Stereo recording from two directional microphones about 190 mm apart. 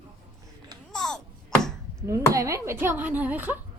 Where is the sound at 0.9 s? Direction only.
5° left (ahead or behind).